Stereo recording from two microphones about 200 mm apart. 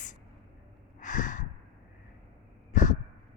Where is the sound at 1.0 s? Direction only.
40° left (ahead or behind).